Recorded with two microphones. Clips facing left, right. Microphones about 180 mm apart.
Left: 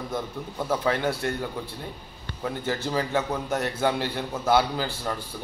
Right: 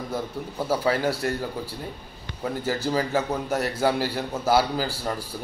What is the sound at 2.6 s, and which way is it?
A man's voice, 5° right (ahead or behind).